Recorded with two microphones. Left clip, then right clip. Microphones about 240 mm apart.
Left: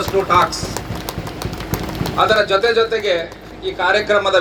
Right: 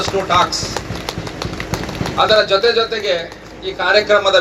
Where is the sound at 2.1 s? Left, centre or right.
Left.